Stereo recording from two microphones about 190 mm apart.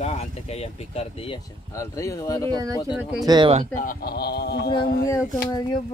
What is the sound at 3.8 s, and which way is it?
Speech, 50° left (ahead or behind).